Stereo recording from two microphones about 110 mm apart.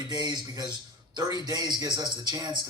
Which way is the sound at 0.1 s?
40° right (ahead or behind).